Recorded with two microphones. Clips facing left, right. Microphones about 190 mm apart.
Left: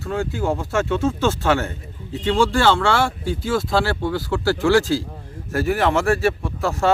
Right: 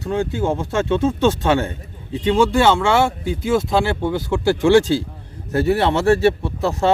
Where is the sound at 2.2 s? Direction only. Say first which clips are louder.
Right 2 dB; 20° right (ahead or behind).